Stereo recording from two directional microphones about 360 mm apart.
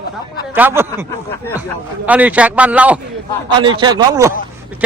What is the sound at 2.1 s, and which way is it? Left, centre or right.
Speech, centre.